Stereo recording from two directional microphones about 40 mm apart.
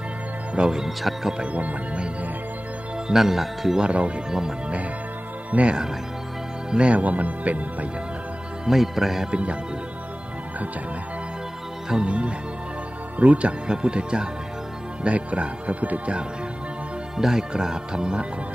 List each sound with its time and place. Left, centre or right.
0.6 s speech: centre
0.8 s speech: centre
1.4 s speech: right
3.1 s speech: centre
3.8 s speech: right
5.5 s speech: right
8.6 s speech: centre
9.3 s speech: right
12.0 s speech: right
17.2 s speech: centre